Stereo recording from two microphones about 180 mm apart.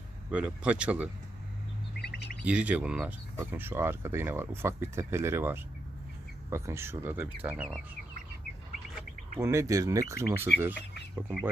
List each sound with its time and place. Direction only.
0.3 s speech: 5° right (ahead or behind)
2.4 s speech: 5° right (ahead or behind)
9.4 s speech: 15° right (ahead or behind)